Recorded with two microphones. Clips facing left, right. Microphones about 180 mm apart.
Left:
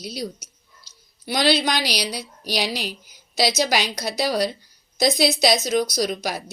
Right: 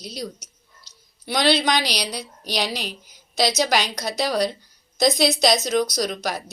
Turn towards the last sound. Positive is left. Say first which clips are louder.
# left 1 dB
turn(degrees=5)  # may be behind; listen again after turning